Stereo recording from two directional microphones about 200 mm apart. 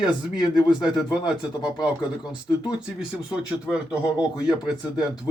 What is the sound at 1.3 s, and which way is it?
Speech, 5° right (ahead or behind).